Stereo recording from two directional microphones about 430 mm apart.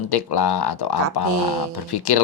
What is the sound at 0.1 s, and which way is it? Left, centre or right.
Speech, left.